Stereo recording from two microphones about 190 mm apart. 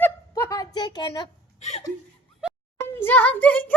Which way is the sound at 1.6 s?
35° left (ahead or behind).